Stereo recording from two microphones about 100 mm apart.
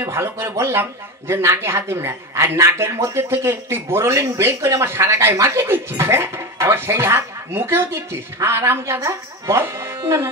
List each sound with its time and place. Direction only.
0.0 s a man's voice: 25° right (ahead or behind)